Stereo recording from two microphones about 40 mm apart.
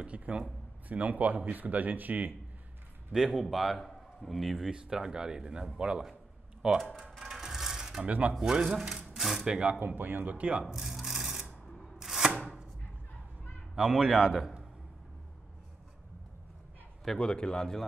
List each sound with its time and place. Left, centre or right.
0.0 s speech: right
0.8 s a man's voice: right
3.1 s speech: centre
4.6 s speech: centre
6.9 s a sound: centre
8.3 s speech: centre
9.5 s speech: right
9.8 s a man's voice: right
10.6 s a sound: centre
12.0 s chopping: centre
13.7 s speech: centre
17.2 s speech: left